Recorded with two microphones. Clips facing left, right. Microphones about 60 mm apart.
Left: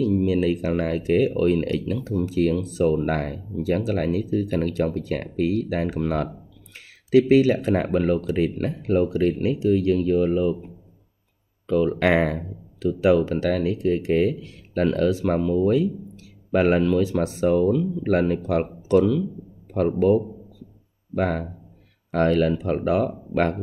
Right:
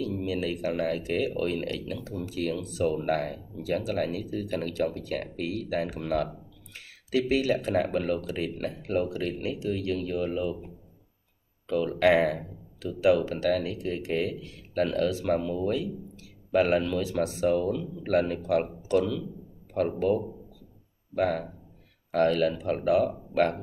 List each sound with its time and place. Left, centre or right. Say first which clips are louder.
0.0 s speech: left 9 dB; left
11.6 s speech: left 3 dB; left